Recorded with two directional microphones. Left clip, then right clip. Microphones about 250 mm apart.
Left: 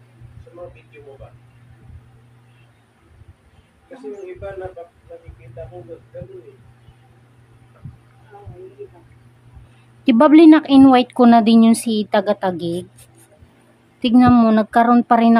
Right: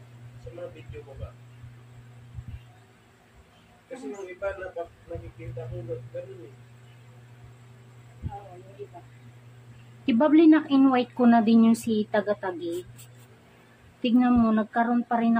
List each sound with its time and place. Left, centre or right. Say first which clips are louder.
10.0 s speech: left 9 dB; left
14.0 s speech: left 10 dB; left